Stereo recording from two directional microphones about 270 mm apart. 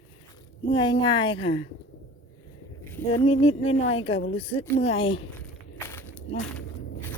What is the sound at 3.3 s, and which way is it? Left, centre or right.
A woman's voice, left.